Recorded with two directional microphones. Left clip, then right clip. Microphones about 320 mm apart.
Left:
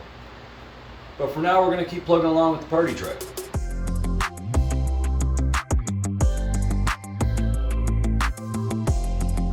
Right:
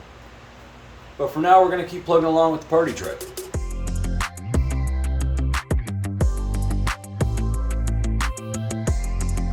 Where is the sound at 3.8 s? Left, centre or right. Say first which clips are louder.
Left 2 dB; centre.